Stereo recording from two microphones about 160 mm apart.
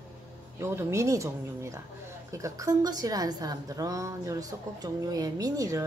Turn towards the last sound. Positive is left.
turn(degrees=-20)  # may be behind; listen again after turning